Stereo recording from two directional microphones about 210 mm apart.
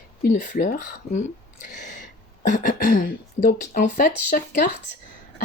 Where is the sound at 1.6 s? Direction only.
35° left (ahead or behind).